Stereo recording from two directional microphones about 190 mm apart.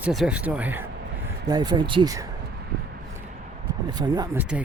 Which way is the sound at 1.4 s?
20° right (ahead or behind).